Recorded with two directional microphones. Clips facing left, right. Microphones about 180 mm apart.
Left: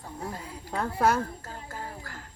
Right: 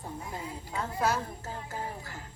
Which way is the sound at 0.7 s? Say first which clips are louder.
Left 5 dB; 60° left (ahead or behind).